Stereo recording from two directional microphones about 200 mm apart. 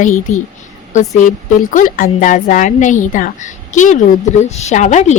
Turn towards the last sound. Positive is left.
turn(degrees=35)  # may be behind; listen again after turning